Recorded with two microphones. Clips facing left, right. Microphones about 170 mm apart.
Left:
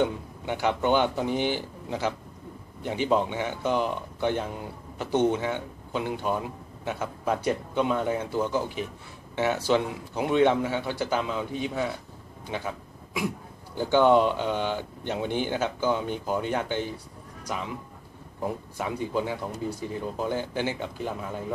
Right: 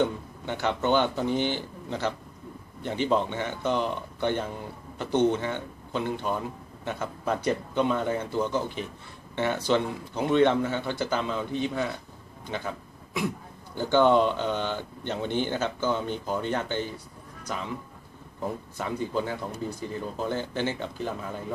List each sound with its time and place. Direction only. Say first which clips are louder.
0.0 s a man's voice: even; 10° left (ahead or behind)
18.8 s speech: even; 10° left (ahead or behind)